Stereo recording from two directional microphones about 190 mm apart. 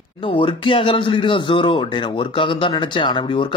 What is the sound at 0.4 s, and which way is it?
Speech, 25° left (ahead or behind).